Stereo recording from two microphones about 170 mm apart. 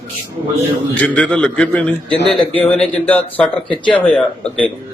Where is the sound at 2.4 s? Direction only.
30° left (ahead or behind).